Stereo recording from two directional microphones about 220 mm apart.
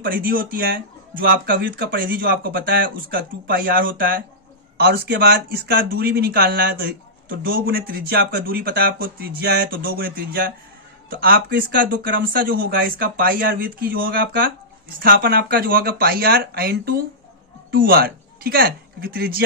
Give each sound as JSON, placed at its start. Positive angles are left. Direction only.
{"t": 0.0, "sound": "speech", "side_deg": -40}